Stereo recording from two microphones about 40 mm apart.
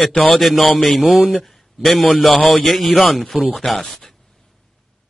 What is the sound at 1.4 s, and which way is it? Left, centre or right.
A man's voice, centre.